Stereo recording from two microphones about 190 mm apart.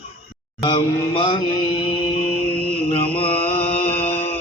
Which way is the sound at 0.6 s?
25° left (ahead or behind).